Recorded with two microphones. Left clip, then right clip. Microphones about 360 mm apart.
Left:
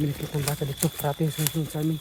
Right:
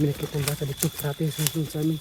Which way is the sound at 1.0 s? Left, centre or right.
Centre.